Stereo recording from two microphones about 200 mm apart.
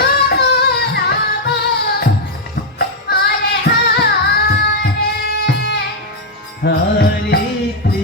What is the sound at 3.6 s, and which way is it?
Music, 50° left (ahead or behind).